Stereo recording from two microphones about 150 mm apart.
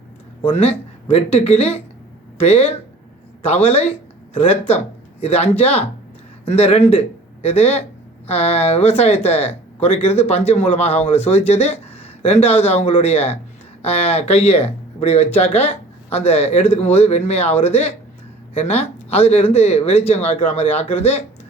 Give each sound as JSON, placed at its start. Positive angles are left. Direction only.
{"t": 0.4, "sound": "speech", "side_deg": 40}